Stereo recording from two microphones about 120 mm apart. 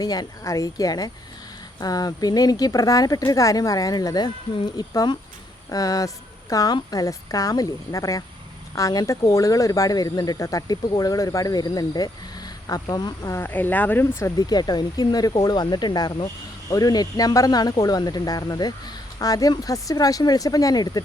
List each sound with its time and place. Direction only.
0.0 s speech: 30° left (ahead or behind)
13.4 s speech: 15° left (ahead or behind)
14.2 s speech: 30° left (ahead or behind)